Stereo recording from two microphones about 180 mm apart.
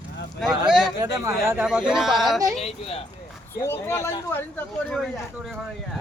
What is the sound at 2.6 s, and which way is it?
Speech, 35° left (ahead or behind).